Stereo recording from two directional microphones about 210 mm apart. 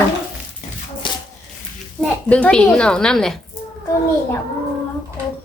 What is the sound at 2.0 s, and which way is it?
A woman's voice, 5° left (ahead or behind).